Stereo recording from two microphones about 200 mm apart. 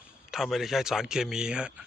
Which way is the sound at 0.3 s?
Centre (ahead or behind).